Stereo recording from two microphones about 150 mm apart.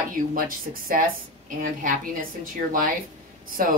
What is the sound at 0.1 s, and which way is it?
A woman's voice, 65° right (ahead or behind).